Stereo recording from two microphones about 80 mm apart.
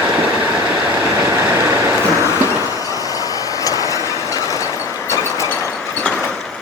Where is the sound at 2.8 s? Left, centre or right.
Left.